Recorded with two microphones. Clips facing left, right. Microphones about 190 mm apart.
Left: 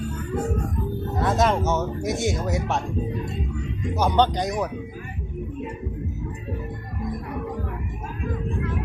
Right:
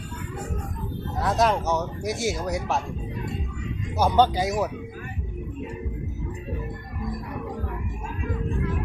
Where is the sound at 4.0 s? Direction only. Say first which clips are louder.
Right 1 dB; 10° right (ahead or behind).